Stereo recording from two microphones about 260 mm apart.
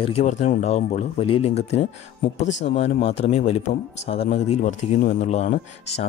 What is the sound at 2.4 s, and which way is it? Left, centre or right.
Speech, left.